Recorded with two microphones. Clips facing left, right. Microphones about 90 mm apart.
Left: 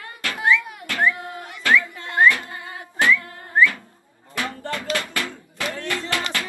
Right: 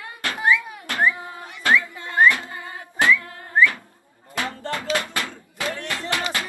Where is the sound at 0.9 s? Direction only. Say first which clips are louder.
Even; 20° right (ahead or behind).